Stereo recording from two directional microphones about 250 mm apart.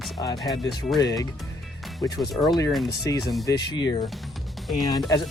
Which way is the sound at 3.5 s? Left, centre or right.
Centre.